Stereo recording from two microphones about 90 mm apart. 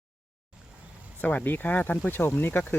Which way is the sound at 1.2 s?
20° left (ahead or behind).